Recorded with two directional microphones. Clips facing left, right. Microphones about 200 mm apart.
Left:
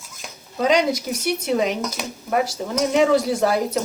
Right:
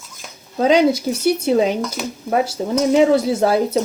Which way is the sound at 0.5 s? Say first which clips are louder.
Right 5 dB; 30° right (ahead or behind).